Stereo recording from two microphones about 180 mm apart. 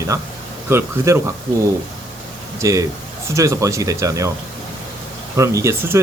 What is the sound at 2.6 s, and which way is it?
Speech, 15° right (ahead or behind).